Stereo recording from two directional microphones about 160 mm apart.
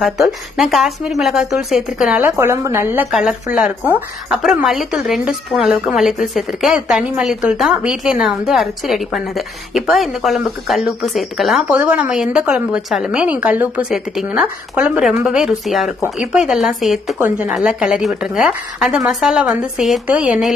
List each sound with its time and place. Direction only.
0.0 s a woman's voice: centre (ahead or behind)
3.1 s a woman's voice: 5° right (ahead or behind)